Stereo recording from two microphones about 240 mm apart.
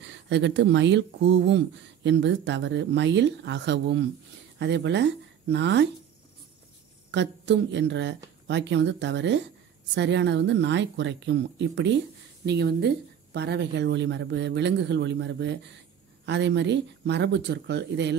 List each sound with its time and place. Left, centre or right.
0.0 s speech: right
7.1 s speech: right